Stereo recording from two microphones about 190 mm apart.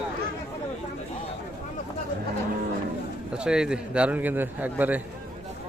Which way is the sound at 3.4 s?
5° right (ahead or behind).